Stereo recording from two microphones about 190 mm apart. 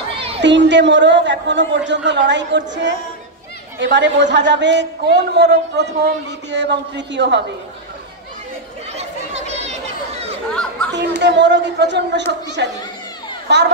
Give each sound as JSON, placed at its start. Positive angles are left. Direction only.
{"t": 0.4, "sound": "a man's voice", "side_deg": -70}
{"t": 8.9, "sound": "chatter", "side_deg": -35}
{"t": 10.9, "sound": "a man's voice", "side_deg": -65}